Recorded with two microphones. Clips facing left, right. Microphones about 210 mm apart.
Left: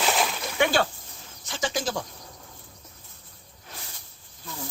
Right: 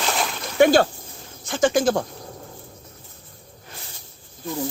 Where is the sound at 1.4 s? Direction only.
50° right (ahead or behind).